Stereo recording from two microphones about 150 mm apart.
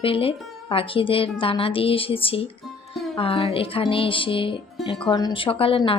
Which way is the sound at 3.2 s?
40° left (ahead or behind).